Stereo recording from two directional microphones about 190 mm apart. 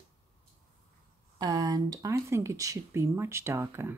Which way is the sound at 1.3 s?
20° right (ahead or behind).